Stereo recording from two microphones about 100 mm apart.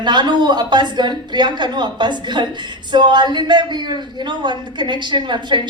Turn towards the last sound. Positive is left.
turn(degrees=-50)  # may be behind; listen again after turning